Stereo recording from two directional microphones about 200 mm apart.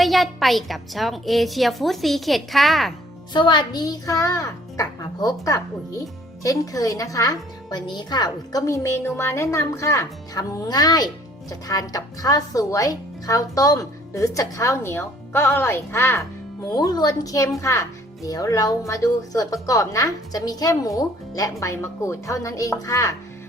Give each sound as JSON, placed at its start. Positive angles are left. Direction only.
{"t": 0.0, "sound": "a woman's voice", "side_deg": 0}
{"t": 3.3, "sound": "a woman's voice", "side_deg": 20}